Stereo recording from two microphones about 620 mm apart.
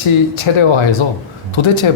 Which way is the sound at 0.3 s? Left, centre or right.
Left.